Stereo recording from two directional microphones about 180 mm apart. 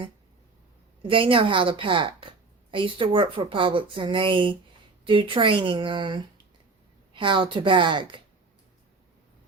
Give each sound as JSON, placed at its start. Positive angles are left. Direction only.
{"t": 1.0, "sound": "speech", "side_deg": -30}